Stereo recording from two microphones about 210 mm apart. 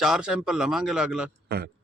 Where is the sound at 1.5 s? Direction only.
50° right (ahead or behind).